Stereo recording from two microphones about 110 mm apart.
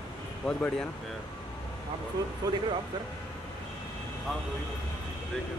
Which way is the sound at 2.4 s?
40° right (ahead or behind).